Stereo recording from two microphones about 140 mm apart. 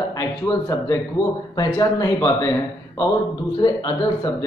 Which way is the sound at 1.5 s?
25° left (ahead or behind).